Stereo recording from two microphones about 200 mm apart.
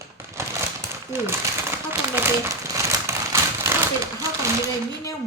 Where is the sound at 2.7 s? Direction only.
15° right (ahead or behind).